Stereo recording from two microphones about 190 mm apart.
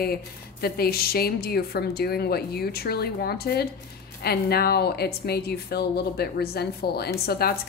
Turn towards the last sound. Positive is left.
turn(degrees=55)  # may be behind; listen again after turning